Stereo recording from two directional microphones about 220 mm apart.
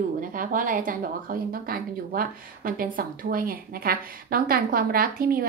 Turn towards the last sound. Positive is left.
turn(degrees=-40)  # may be behind; listen again after turning